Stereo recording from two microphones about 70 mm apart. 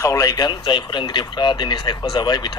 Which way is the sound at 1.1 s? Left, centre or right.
Left.